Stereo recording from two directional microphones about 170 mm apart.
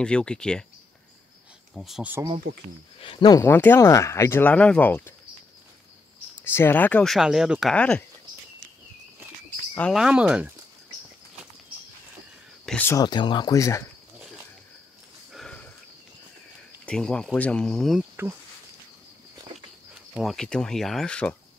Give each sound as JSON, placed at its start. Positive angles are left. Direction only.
{"t": 0.0, "sound": "speech", "side_deg": 5}
{"t": 1.8, "sound": "speech", "side_deg": 0}
{"t": 3.0, "sound": "speech", "side_deg": 30}
{"t": 6.4, "sound": "speech", "side_deg": 15}
{"t": 7.7, "sound": "speech", "side_deg": 5}
{"t": 9.8, "sound": "speech", "side_deg": 0}
{"t": 12.6, "sound": "a sound", "side_deg": 10}
{"t": 12.9, "sound": "speech", "side_deg": 25}
{"t": 15.3, "sound": "sniff", "side_deg": 5}
{"t": 16.8, "sound": "speech", "side_deg": 5}
{"t": 19.9, "sound": "speech", "side_deg": 0}